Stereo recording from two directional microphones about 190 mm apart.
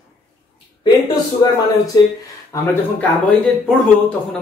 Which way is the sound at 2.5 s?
5° left (ahead or behind).